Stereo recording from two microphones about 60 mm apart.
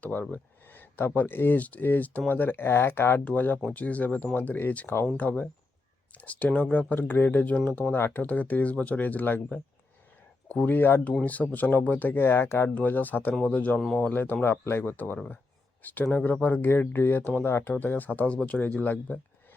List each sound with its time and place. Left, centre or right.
0.0 s speech: left
3.2 s speech: left
13.7 s speech: centre
14.0 s speech: left
18.3 s speech: centre
18.6 s speech: left